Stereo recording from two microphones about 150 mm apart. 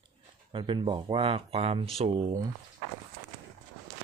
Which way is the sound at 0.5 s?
35° right (ahead or behind).